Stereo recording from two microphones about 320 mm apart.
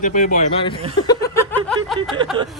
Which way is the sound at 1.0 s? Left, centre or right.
Centre.